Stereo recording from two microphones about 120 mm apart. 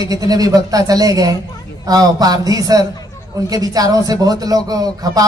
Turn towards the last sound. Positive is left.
turn(degrees=-30)  # may be behind; listen again after turning